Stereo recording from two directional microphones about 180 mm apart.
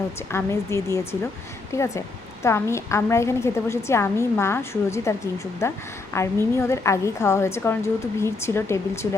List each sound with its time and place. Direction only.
0.3 s a woman's voice: 15° left (ahead or behind)